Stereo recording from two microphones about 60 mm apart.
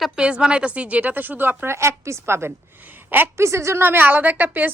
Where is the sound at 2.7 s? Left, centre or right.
Right.